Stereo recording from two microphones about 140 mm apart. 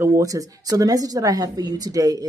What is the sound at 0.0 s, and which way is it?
A woman's voice, 20° right (ahead or behind).